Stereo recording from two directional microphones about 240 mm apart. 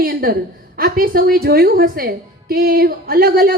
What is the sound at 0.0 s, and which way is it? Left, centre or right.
A woman's voice, right.